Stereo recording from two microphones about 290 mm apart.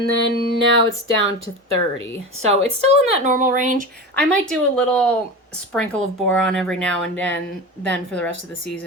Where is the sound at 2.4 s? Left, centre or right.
Right.